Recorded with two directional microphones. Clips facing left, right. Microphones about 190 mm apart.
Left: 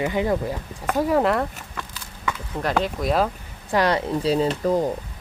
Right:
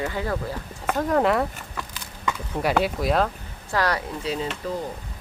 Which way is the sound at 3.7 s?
20° left (ahead or behind).